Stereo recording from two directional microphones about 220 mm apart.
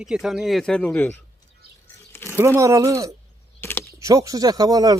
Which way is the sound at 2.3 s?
10° right (ahead or behind).